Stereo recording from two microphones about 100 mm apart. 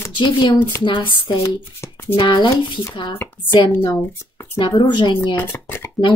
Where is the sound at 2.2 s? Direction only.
50° left (ahead or behind).